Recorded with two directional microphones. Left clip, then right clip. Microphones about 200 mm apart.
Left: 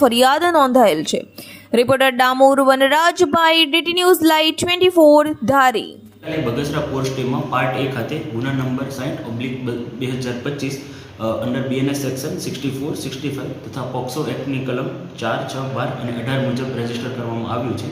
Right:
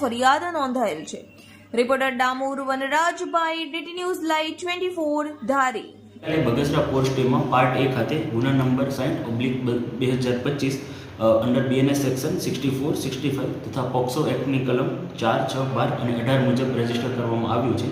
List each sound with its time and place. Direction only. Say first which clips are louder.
0.0 s speech: left 7 dB; 50° left (ahead or behind)
6.6 s a man's voice: even; centre (ahead or behind)